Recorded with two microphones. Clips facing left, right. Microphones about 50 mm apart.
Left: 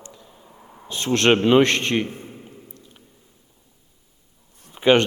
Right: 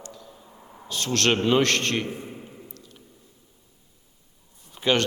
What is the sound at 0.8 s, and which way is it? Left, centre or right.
Speech, left.